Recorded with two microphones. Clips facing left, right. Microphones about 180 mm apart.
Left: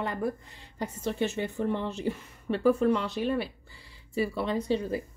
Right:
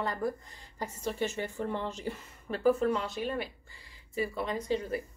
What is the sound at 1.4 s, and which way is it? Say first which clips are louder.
Speech: left 4 dB; 20° left (ahead or behind).